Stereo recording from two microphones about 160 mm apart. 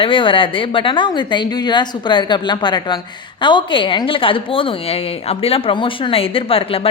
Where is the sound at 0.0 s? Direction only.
30° left (ahead or behind).